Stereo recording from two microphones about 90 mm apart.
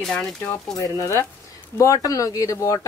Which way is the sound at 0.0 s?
5° left (ahead or behind).